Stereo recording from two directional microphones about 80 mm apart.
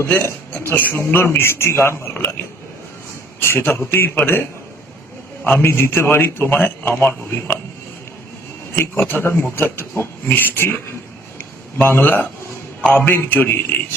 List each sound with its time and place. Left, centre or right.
0.1 s a man's voice: left
5.5 s a man's voice: left
8.7 s a man's voice: left
11.8 s a man's voice: left